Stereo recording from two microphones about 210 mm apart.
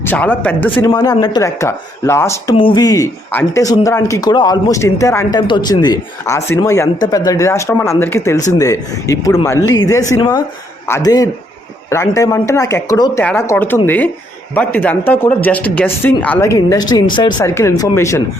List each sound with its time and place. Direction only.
0.0 s speech: 5° left (ahead or behind)
0.9 s speech: 20° left (ahead or behind)